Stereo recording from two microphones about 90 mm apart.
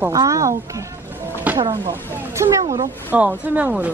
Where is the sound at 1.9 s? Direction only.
30° right (ahead or behind).